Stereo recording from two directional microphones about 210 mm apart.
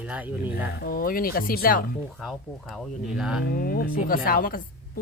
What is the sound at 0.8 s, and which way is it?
A woman's voice, 45° left (ahead or behind).